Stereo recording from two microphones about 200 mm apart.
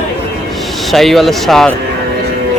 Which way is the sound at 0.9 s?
Centre (ahead or behind).